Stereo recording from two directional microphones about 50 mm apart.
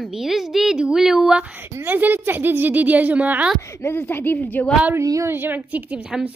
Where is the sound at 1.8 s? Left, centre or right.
Right.